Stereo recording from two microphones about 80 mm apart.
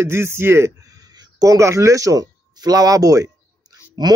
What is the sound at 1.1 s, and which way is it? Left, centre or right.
A man's voice, right.